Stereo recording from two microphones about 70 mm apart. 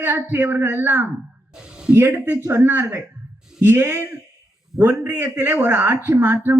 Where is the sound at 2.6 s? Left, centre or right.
Right.